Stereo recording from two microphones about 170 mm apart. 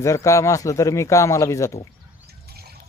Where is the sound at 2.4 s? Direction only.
65° right (ahead or behind).